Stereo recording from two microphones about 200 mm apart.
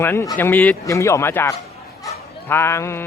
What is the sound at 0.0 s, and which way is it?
Speech, 10° left (ahead or behind).